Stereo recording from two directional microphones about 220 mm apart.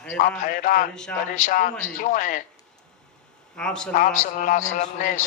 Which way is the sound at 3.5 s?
5° left (ahead or behind).